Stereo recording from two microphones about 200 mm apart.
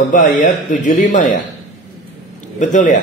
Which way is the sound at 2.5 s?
40° left (ahead or behind).